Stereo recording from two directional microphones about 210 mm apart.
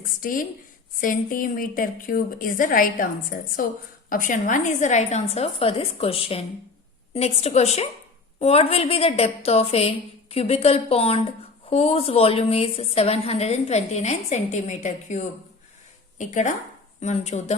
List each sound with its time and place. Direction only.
0.2 s a woman's voice: 40° left (ahead or behind)